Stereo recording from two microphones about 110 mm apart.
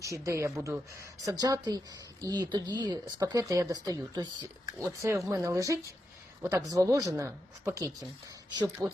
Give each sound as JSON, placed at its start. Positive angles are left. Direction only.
{"t": 0.0, "sound": "speech", "side_deg": -30}
{"t": 8.8, "sound": "speech", "side_deg": -35}